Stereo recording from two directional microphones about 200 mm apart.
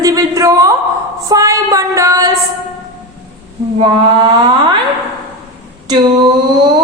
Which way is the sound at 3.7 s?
20° right (ahead or behind).